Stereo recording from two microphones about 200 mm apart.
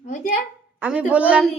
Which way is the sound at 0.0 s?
40° left (ahead or behind).